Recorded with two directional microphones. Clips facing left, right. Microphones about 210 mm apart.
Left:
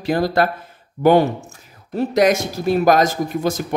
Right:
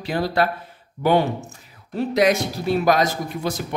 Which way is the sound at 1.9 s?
45° left (ahead or behind).